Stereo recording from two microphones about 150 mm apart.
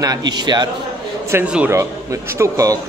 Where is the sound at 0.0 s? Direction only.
25° right (ahead or behind).